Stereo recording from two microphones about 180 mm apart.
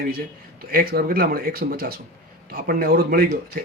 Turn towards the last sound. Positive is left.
turn(degrees=-55)  # may be behind; listen again after turning